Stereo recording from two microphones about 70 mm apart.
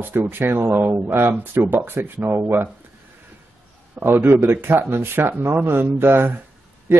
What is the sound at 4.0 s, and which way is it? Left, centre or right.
Speech, right.